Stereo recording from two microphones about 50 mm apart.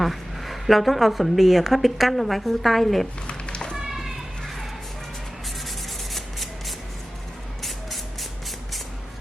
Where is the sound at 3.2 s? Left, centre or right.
Centre.